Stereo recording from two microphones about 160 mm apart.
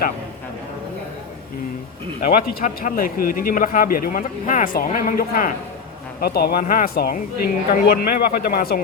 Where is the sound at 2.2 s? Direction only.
65° left (ahead or behind).